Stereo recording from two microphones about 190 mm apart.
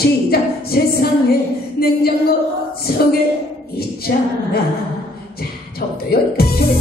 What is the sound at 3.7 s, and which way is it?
Speech, 55° left (ahead or behind).